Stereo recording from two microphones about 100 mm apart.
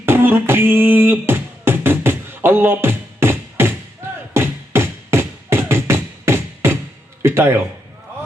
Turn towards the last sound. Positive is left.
turn(degrees=-25)  # may be behind; listen again after turning